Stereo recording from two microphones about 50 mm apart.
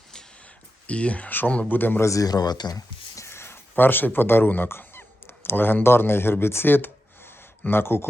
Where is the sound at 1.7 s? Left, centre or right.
Left.